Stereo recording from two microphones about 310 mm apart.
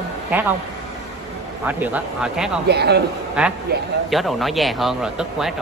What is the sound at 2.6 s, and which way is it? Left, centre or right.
Speech, right.